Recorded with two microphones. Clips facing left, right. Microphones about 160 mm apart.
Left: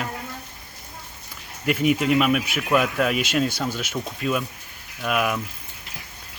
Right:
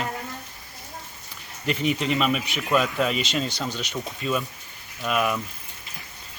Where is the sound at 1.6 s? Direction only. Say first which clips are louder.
Left 4 dB; 5° left (ahead or behind).